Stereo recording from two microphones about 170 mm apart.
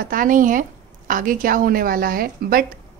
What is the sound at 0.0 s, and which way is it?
A woman's voice, 55° right (ahead or behind).